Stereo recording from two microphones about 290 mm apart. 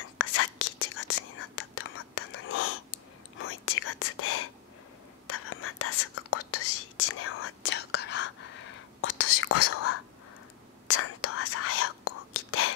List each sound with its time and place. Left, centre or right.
0.2 s whispering: left
7.7 s whispering: left